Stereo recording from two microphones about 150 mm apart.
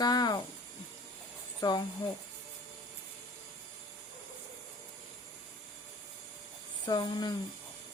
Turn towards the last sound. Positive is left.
turn(degrees=30)  # may be behind; listen again after turning